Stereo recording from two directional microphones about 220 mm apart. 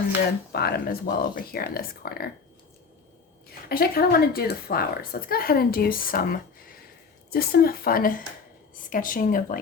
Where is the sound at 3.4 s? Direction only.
45° left (ahead or behind).